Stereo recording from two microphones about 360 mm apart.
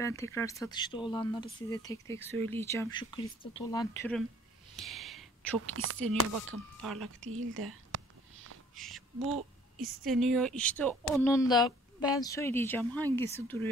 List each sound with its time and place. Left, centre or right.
0.0 s speech: centre
4.7 s a sound: centre
5.7 s speech: right
6.8 s speech: centre
7.2 s speech: right
8.7 s speech: centre